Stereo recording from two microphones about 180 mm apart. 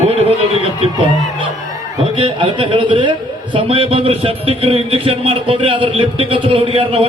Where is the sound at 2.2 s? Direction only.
30° right (ahead or behind).